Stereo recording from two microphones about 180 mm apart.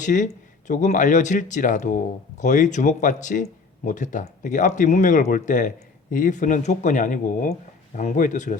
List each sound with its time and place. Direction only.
0.0 s speech: 45° left (ahead or behind)